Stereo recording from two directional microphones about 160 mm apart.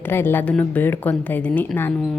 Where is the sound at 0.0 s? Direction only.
15° left (ahead or behind).